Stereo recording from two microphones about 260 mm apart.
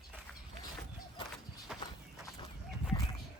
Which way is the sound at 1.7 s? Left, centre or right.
Centre.